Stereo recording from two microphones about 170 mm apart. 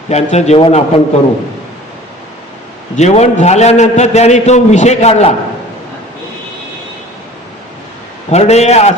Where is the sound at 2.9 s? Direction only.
40° left (ahead or behind).